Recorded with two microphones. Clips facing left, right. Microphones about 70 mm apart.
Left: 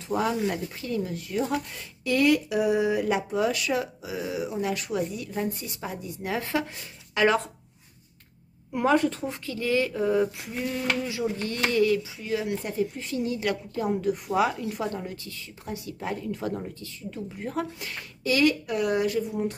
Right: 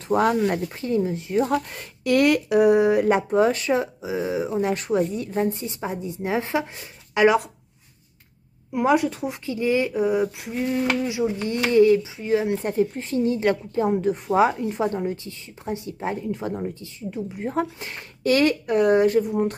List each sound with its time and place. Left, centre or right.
0.1 s speech: right
0.7 s speech: right
1.4 s speech: right; by 7.5 s centre
8.7 s a woman's voice: centre; by 18.0 s right
18.2 s speech: right
19.1 s speech: right